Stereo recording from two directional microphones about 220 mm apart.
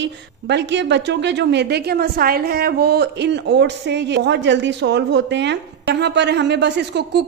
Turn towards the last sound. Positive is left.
turn(degrees=-50)  # may be behind; listen again after turning